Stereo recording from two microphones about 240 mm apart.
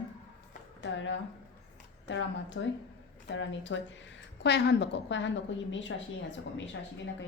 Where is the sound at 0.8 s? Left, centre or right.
Left.